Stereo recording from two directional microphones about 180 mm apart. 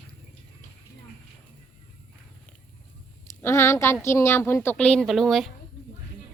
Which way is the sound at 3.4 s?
15° left (ahead or behind).